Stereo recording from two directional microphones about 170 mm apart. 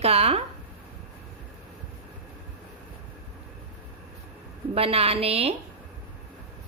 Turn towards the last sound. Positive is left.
turn(degrees=-35)  # may be behind; listen again after turning